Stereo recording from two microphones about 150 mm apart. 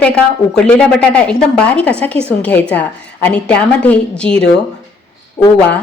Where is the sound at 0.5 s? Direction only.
5° left (ahead or behind).